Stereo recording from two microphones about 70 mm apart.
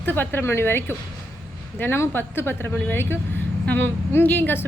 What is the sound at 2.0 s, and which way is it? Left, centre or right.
A woman's voice, left.